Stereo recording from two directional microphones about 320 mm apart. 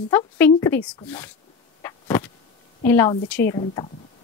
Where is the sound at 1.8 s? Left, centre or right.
Centre.